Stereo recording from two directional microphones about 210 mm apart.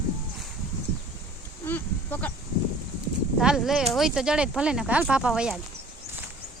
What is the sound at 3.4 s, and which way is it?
Speech, centre (ahead or behind).